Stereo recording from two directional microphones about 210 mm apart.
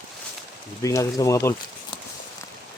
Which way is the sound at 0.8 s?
15° left (ahead or behind).